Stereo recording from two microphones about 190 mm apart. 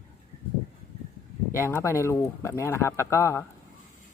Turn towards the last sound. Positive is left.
turn(degrees=15)  # may be behind; listen again after turning